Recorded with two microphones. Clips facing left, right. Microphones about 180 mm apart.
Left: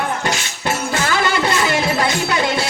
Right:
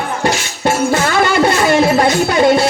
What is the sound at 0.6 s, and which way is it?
Music, 45° right (ahead or behind).